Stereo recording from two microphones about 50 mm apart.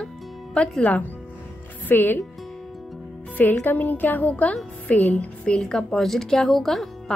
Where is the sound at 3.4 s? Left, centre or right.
Left.